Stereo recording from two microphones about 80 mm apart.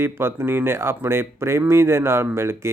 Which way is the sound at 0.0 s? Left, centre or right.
Right.